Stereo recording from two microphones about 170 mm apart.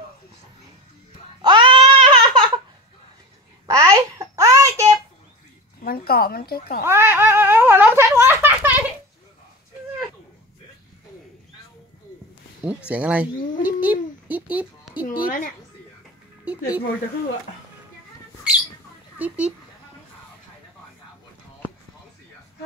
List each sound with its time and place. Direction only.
1.4 s baby cry: 25° right (ahead or behind)
3.6 s babbling: 20° right (ahead or behind)
5.9 s a woman's voice: 65° left (ahead or behind)
6.9 s speech: 15° right (ahead or behind)
12.6 s speech: 10° right (ahead or behind)
13.7 s babbling: 10° right (ahead or behind)
15.0 s a sound: 55° left (ahead or behind)
19.1 s a sound: 10° right (ahead or behind)